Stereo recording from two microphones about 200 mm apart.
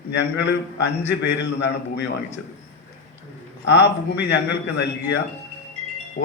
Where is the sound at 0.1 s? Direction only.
60° left (ahead or behind).